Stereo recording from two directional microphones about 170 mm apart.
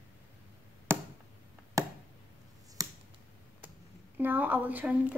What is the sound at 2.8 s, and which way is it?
Finger snapping, 20° right (ahead or behind).